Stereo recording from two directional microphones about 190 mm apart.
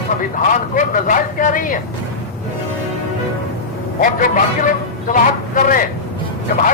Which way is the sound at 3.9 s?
45° left (ahead or behind).